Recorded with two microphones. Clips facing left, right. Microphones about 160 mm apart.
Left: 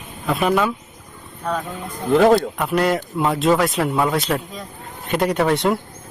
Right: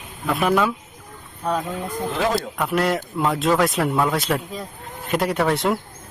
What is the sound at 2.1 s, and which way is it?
Speech, 45° left (ahead or behind).